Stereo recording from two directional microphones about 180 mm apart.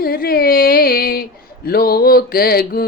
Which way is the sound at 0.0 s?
55° left (ahead or behind).